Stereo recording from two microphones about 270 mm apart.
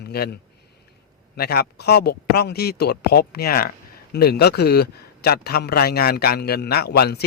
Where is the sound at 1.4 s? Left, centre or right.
Left.